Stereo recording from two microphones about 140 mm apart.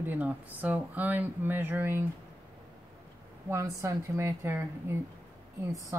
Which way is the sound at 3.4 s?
20° right (ahead or behind).